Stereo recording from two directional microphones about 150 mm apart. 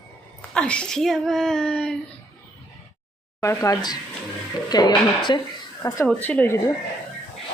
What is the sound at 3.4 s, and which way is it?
Speech, 20° left (ahead or behind).